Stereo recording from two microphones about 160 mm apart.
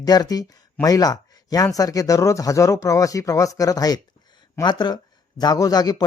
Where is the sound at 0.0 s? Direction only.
25° left (ahead or behind).